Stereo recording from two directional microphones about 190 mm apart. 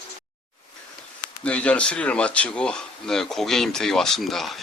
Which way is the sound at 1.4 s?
5° left (ahead or behind).